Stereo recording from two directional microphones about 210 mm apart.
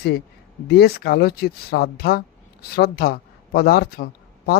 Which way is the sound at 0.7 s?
50° left (ahead or behind).